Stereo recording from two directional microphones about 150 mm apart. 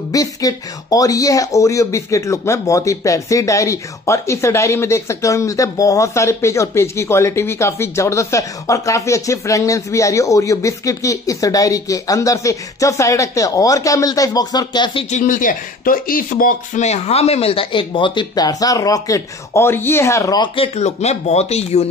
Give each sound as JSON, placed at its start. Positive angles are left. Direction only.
{"t": 0.1, "sound": "speech", "side_deg": 25}
{"t": 15.0, "sound": "speech", "side_deg": 60}
{"t": 20.5, "sound": "speech", "side_deg": 40}